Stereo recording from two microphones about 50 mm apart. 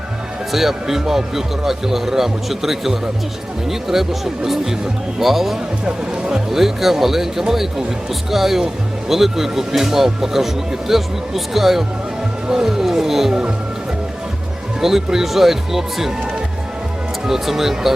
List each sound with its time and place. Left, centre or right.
0.5 s speech: centre
4.4 s music: centre
5.8 s speech: centre
6.5 s speech: centre
12.6 s music: centre
14.8 s speech: centre
17.2 s speech: centre